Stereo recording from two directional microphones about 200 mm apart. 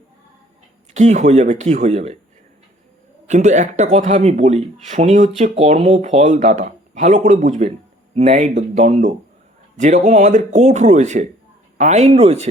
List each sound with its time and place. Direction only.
0.9 s speech: 35° right (ahead or behind)
3.2 s speech: 35° right (ahead or behind)